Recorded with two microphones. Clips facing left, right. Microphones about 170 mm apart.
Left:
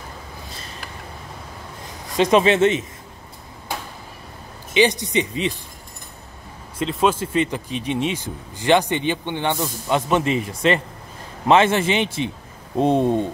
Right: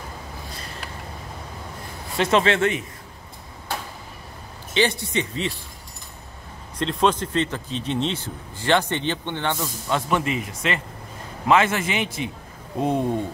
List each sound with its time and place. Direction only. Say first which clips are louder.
2.1 s speech: left 4 dB; 15° left (ahead or behind)
4.7 s speech: left 4 dB; 15° left (ahead or behind)
6.8 s speech: left 1 dB; 5° left (ahead or behind); by 13.2 s 25° left (ahead or behind)